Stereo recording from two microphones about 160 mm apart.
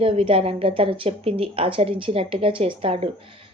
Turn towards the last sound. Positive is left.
turn(degrees=-35)  # may be behind; listen again after turning